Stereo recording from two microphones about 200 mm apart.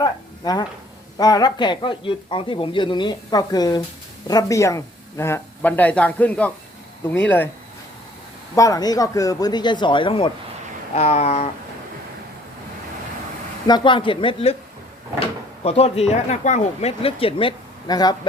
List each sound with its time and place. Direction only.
0.0 s speech: 20° left (ahead or behind)
8.5 s speech: 15° left (ahead or behind)
10.9 s a sound: 30° left (ahead or behind)
13.7 s speech: 20° left (ahead or behind)
15.6 s speech: 30° left (ahead or behind)